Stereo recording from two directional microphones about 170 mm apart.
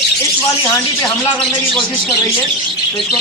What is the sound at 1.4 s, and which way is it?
Speech, centre (ahead or behind).